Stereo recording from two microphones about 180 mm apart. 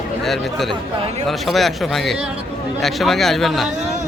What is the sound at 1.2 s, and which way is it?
Speech, centre (ahead or behind).